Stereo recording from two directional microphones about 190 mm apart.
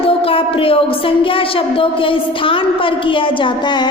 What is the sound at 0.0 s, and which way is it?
A woman's voice, 30° left (ahead or behind).